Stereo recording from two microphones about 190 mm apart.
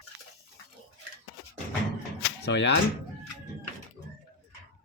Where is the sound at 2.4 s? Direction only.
65° left (ahead or behind).